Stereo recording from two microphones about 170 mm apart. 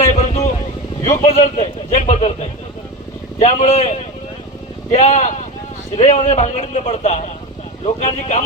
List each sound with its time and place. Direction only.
0.1 s vehicle: 45° left (ahead or behind)
1.2 s speech: 35° left (ahead or behind)
2.0 s a man's voice: 45° left (ahead or behind)
3.3 s a man's voice: 45° left (ahead or behind)